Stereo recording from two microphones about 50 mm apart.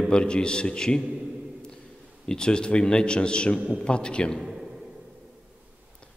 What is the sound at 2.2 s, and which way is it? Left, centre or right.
A man's voice, centre.